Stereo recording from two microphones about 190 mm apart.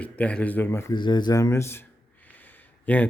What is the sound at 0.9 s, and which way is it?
A man's voice, 25° left (ahead or behind).